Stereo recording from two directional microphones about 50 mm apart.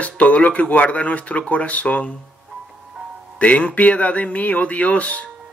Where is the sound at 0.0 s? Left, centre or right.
Left.